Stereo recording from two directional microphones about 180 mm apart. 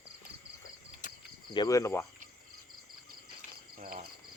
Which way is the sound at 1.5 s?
20° left (ahead or behind).